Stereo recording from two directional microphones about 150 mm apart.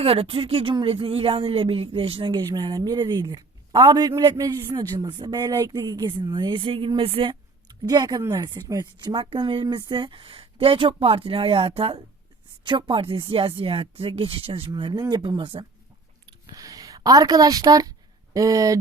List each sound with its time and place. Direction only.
0.0 s a man's voice: 40° right (ahead or behind)
16.5 s a man's voice: 25° right (ahead or behind)